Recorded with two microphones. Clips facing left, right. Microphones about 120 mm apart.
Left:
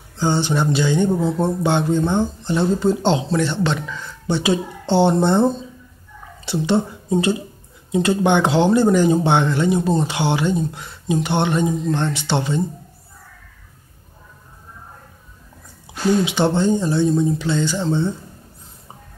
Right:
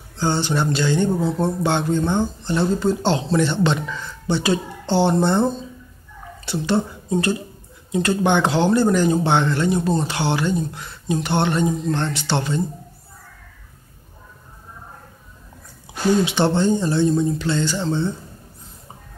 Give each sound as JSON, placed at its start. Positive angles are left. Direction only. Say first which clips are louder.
{"t": 0.2, "sound": "speech", "louder": "left 2 dB", "side_deg": 15}
{"t": 3.3, "sound": "speech", "louder": "right 1 dB", "side_deg": 0}
{"t": 4.3, "sound": "speech", "louder": "left 1 dB", "side_deg": 15}
{"t": 6.4, "sound": "speech", "louder": "left 2 dB", "side_deg": 20}
{"t": 16.3, "sound": "speech", "louder": "left 1 dB", "side_deg": 10}